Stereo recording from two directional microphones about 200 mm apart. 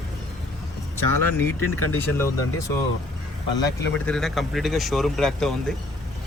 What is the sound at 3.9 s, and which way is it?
Speech, 5° left (ahead or behind).